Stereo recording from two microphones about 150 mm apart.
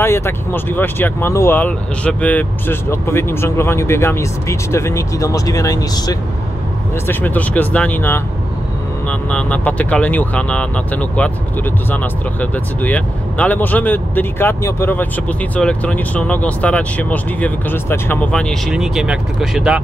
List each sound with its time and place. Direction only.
0.0 s speech: 15° left (ahead or behind)
7.1 s speech: 15° left (ahead or behind)
9.3 s speech: 5° left (ahead or behind)